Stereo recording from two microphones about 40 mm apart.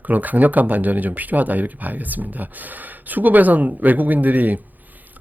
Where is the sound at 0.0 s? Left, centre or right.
Right.